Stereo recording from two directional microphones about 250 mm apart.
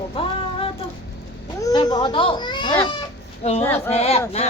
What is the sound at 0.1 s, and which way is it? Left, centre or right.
Music, left.